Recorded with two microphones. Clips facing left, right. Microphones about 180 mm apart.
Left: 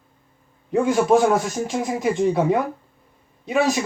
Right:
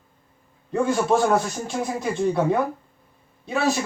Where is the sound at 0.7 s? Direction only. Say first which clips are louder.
Left 4 dB; 15° left (ahead or behind).